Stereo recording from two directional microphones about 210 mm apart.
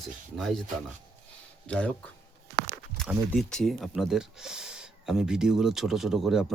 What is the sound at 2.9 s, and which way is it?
Speech, centre (ahead or behind).